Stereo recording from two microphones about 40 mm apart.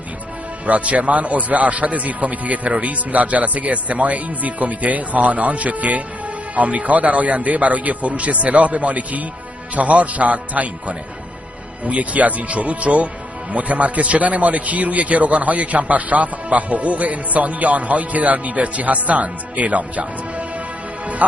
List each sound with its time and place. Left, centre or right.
0.7 s speech: right